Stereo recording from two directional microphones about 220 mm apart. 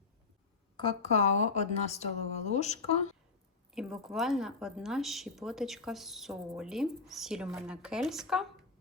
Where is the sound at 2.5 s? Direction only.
30° left (ahead or behind).